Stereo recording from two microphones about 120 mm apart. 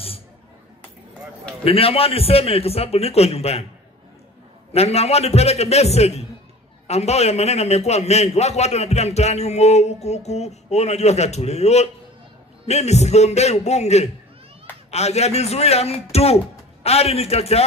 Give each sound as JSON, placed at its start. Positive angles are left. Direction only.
{"t": 1.6, "sound": "a man's voice", "side_deg": 55}
{"t": 4.7, "sound": "a man's voice", "side_deg": 60}